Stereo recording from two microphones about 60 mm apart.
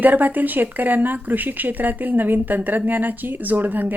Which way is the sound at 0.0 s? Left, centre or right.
Right.